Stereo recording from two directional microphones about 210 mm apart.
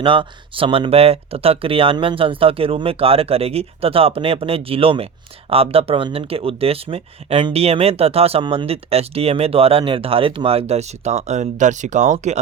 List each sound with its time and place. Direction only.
0.0 s speech: 25° right (ahead or behind)